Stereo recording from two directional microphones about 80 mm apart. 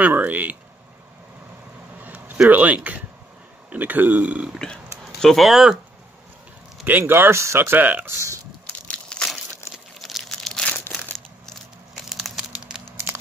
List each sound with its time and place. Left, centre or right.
0.0 s speech: centre
2.0 s a sound: right
3.7 s speech: right
5.2 s speech: centre
6.8 s speech: right
8.8 s crushing: centre
9.7 s crumpling: centre
12.9 s crumpling: right